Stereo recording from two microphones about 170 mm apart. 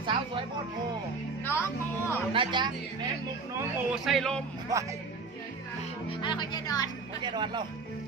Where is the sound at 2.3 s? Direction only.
30° right (ahead or behind).